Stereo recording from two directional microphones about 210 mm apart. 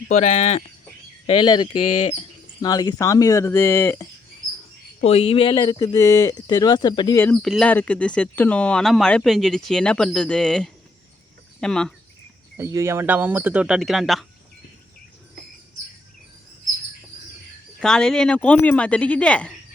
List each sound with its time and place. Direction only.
0.1 s speech: 35° left (ahead or behind)
1.3 s speech: 20° left (ahead or behind)
2.6 s speech: 20° left (ahead or behind)
4.9 s speech: 30° left (ahead or behind)
7.3 s speech: centre (ahead or behind)
12.5 s speech: 15° right (ahead or behind)
17.7 s speech: 5° left (ahead or behind)